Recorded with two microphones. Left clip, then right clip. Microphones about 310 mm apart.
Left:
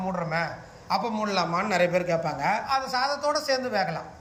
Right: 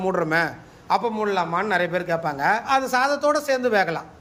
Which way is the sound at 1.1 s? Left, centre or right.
Centre.